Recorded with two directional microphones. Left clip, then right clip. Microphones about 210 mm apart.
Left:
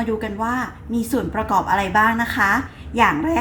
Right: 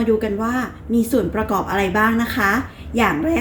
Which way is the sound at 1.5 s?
15° left (ahead or behind).